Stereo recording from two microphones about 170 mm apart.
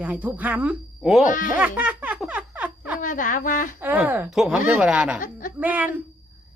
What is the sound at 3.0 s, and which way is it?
Speech, 50° left (ahead or behind).